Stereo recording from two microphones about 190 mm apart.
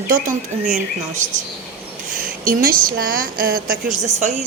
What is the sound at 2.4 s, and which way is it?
A woman's voice, 50° right (ahead or behind).